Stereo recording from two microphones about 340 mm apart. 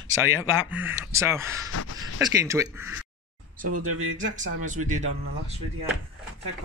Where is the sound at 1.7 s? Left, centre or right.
Left.